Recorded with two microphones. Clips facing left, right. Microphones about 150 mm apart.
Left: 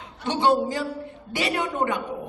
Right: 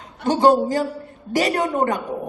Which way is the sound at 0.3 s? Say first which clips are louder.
Right 6 dB; 45° right (ahead or behind).